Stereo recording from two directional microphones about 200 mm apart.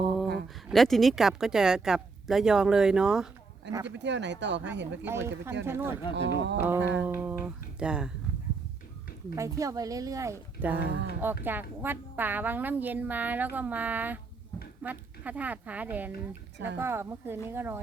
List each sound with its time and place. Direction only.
0.4 s speech: centre (ahead or behind)
3.8 s speech: 60° right (ahead or behind)
5.0 s a woman's voice: 10° right (ahead or behind)
6.1 s speech: 60° right (ahead or behind)
6.6 s a woman's voice: 10° right (ahead or behind)
9.3 s a woman's voice: 15° right (ahead or behind)